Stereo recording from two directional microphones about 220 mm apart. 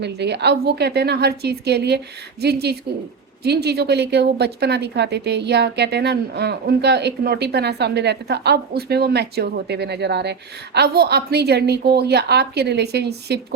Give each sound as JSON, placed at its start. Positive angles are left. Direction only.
{"t": 0.0, "sound": "speech", "side_deg": -50}